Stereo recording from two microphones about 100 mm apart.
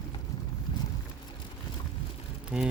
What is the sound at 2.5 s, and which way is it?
Speech, 10° right (ahead or behind).